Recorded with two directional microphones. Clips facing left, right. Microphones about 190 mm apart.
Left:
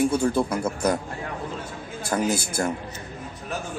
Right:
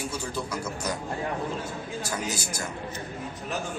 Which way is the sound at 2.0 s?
55° left (ahead or behind).